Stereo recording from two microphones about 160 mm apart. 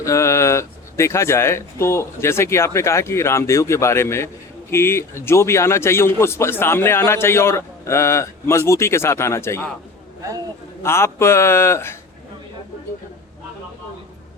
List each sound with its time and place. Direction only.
0.0 s a man's voice: 20° left (ahead or behind)
10.8 s a man's voice: 15° left (ahead or behind)